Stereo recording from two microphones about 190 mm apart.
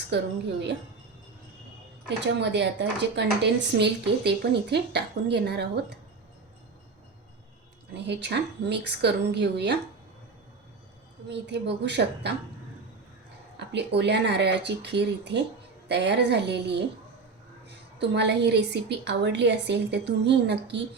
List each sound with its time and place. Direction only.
0.1 s speech: 65° right (ahead or behind)
2.0 s speech: 65° right (ahead or behind)
7.9 s speech: 65° right (ahead or behind)
11.3 s speech: 65° right (ahead or behind)
13.6 s speech: 65° right (ahead or behind)
18.0 s speech: 65° right (ahead or behind)